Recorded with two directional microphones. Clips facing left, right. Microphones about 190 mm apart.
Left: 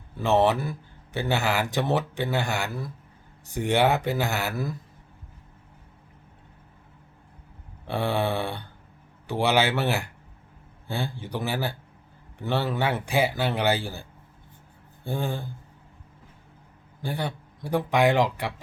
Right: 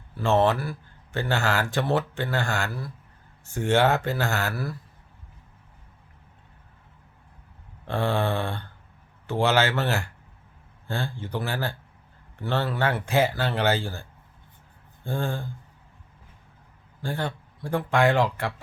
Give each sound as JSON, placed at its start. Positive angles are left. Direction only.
{"t": 0.2, "sound": "speech", "side_deg": 20}
{"t": 7.9, "sound": "a man's voice", "side_deg": 15}
{"t": 15.0, "sound": "speech", "side_deg": 15}
{"t": 17.0, "sound": "speech", "side_deg": 15}